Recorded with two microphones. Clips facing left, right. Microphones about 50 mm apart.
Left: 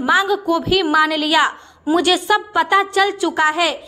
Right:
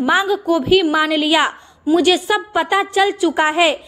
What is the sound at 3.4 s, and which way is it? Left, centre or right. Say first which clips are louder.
Speech: right 1 dB; right.